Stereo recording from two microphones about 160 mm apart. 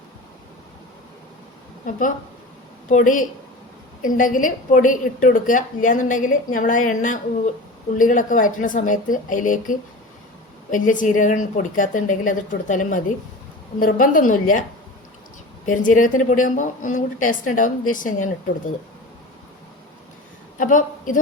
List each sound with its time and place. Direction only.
2.9 s a woman's voice: 55° left (ahead or behind)
15.6 s a woman's voice: 55° left (ahead or behind)
20.6 s a woman's voice: 55° left (ahead or behind)